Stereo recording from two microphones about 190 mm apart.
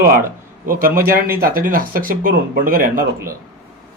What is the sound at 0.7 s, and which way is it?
A man's voice, 50° right (ahead or behind).